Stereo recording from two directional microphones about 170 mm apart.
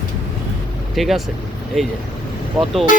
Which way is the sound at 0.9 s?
Centre (ahead or behind).